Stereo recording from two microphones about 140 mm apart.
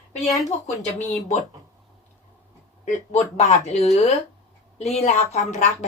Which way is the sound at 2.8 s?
55° left (ahead or behind).